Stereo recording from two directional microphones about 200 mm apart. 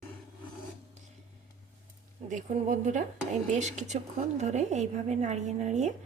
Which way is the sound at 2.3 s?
35° right (ahead or behind).